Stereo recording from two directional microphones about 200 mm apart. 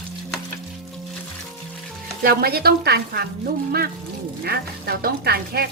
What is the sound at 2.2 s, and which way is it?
Frying, 50° right (ahead or behind).